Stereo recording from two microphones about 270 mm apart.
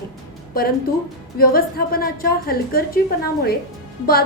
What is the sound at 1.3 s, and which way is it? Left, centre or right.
A woman's voice, left.